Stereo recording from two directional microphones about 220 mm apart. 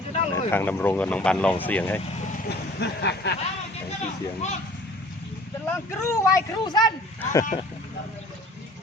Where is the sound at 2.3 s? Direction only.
45° left (ahead or behind).